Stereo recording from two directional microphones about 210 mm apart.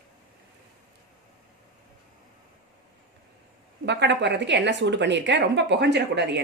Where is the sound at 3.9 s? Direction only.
55° right (ahead or behind).